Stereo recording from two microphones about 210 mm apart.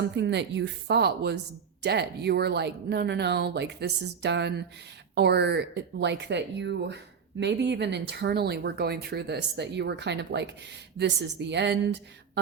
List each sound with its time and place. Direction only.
0.1 s a woman's voice: 55° right (ahead or behind)